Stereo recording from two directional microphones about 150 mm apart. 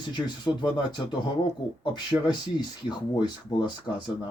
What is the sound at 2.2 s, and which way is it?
Speech, 30° left (ahead or behind).